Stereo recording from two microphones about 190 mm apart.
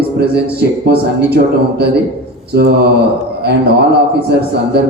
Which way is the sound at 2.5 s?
60° right (ahead or behind).